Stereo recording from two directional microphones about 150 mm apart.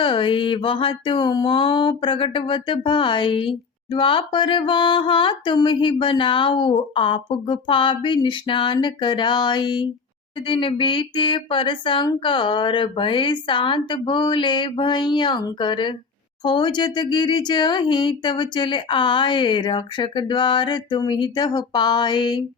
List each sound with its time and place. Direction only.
0.0 s speech: 35° left (ahead or behind)